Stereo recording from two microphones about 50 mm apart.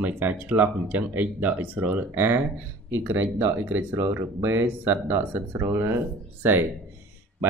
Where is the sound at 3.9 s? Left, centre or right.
Right.